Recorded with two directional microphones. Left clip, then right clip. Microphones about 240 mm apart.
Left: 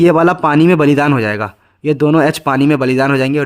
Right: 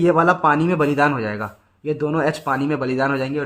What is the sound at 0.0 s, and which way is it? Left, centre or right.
A man's voice, left.